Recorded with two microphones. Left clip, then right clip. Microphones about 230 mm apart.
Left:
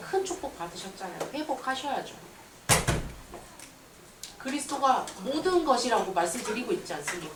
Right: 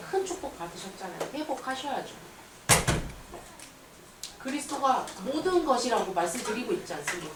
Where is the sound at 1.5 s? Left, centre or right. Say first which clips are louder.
Left 5 dB; centre.